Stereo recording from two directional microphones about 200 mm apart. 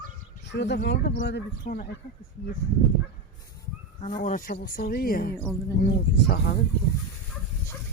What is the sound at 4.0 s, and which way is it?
Speech, 40° left (ahead or behind).